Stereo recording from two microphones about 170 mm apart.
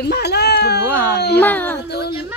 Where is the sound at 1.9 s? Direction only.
70° left (ahead or behind).